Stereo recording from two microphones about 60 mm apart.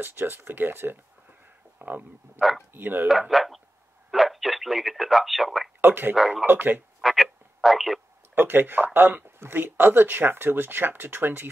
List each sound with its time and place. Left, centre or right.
0.0 s speech: right
3.1 s speech: centre
5.8 s speech: right
6.1 s speech: centre
6.4 s speech: right
7.0 s telephone: centre
8.4 s speech: right